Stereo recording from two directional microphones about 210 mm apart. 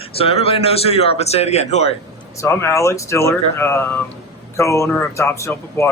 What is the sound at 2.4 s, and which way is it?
Speech, 15° left (ahead or behind).